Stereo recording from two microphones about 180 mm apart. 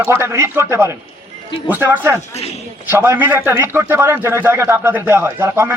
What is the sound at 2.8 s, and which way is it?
A man's voice, 15° right (ahead or behind).